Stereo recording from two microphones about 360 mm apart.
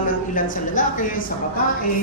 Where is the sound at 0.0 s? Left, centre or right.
Left.